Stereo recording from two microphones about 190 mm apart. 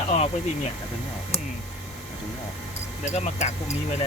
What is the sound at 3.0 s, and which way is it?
Speech, 35° left (ahead or behind).